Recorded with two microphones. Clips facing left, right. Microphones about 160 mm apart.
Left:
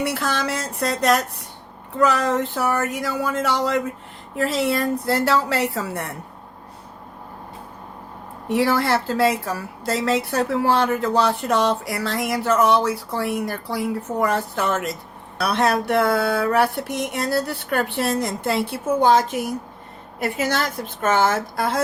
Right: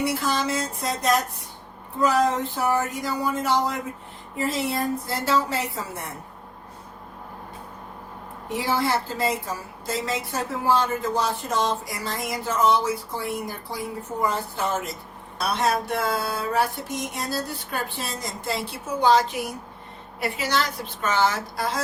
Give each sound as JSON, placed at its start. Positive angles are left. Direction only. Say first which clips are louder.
{"t": 0.0, "sound": "a woman's voice", "louder": "left 1 dB", "side_deg": 75}
{"t": 8.5, "sound": "a woman's voice", "louder": "left 5 dB", "side_deg": 75}
{"t": 15.4, "sound": "a sound", "louder": "left 4 dB", "side_deg": 65}
{"t": 20.1, "sound": "a woman's voice", "louder": "left 3 dB", "side_deg": 50}